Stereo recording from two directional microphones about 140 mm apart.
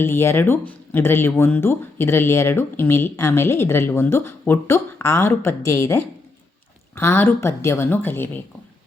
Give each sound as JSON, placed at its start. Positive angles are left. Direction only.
{"t": 0.0, "sound": "speech", "side_deg": 15}